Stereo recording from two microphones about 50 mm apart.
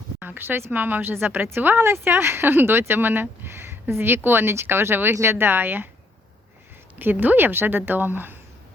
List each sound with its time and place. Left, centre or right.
0.2 s speech: right
1.8 s speech: right
7.0 s a woman's voice: right